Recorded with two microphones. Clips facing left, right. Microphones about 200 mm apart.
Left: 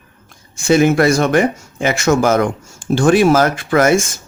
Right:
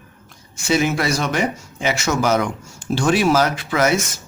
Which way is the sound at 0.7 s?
50° left (ahead or behind).